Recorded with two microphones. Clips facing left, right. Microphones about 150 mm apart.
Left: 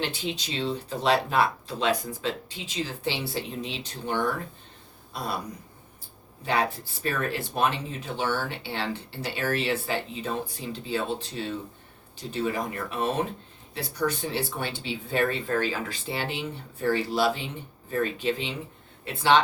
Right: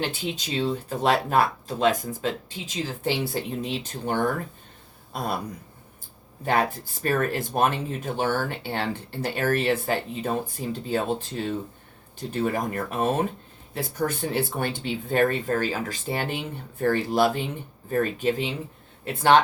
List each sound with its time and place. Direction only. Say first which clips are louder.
0.1 s speech: right 3 dB; 50° right (ahead or behind)
6.4 s speech: right 3 dB; 50° right (ahead or behind)